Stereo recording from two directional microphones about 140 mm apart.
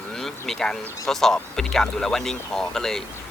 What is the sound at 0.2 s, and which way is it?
Speech, 5° left (ahead or behind).